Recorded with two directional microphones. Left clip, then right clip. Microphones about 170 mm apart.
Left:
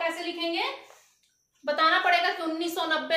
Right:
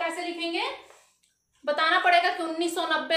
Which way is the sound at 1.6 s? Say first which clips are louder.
Even; 30° right (ahead or behind).